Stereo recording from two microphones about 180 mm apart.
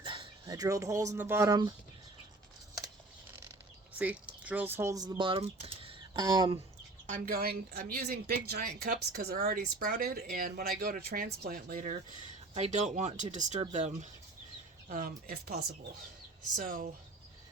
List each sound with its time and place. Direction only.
0.0 s speech: 25° right (ahead or behind)
3.9 s speech: 10° right (ahead or behind)
7.1 s speech: 55° right (ahead or behind)